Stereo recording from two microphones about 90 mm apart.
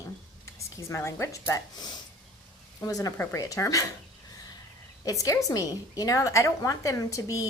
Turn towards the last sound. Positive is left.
turn(degrees=35)  # may be behind; listen again after turning